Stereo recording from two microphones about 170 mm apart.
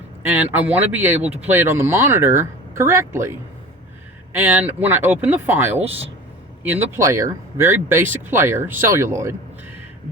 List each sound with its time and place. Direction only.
0.2 s speech: 10° right (ahead or behind)
5.8 s speech: 35° right (ahead or behind)
6.6 s speech: 10° right (ahead or behind)